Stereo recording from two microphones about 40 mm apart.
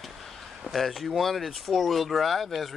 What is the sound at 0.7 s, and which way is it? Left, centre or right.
Speech, centre.